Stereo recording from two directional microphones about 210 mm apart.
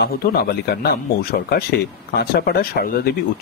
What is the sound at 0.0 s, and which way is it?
Speech, 45° left (ahead or behind).